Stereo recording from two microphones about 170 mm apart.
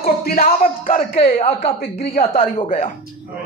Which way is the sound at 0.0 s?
60° left (ahead or behind).